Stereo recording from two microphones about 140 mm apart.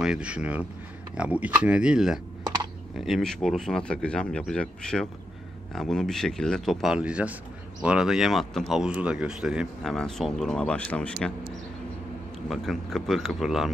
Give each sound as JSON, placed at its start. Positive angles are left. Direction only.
{"t": 0.0, "sound": "speech", "side_deg": -5}
{"t": 2.4, "sound": "typing", "side_deg": -30}
{"t": 3.0, "sound": "speech", "side_deg": 0}
{"t": 12.4, "sound": "speech", "side_deg": 0}